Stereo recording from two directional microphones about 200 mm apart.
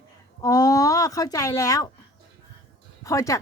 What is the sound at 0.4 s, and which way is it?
Speech, 15° left (ahead or behind).